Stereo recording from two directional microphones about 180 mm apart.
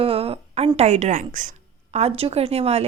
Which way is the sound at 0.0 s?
30° right (ahead or behind).